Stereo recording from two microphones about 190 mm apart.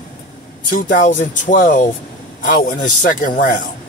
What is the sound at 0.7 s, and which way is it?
A man's voice, 45° left (ahead or behind).